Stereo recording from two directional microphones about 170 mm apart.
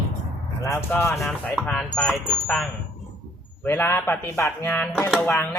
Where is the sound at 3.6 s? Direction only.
10° left (ahead or behind).